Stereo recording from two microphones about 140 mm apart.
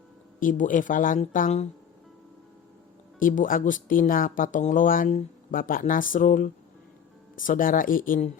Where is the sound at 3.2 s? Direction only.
75° left (ahead or behind).